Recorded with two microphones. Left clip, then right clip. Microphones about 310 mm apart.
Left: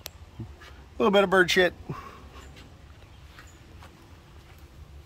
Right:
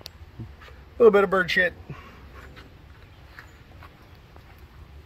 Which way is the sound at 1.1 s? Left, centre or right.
Centre.